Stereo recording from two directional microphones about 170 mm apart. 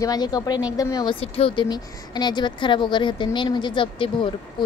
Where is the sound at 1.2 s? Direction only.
35° left (ahead or behind).